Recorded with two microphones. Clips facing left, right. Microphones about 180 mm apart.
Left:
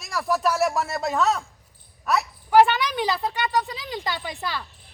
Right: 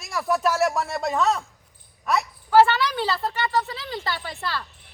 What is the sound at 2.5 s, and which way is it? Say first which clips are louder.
Speech: even; 15° left (ahead or behind).